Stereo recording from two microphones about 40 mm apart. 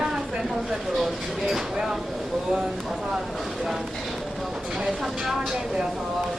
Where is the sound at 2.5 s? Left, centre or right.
Centre.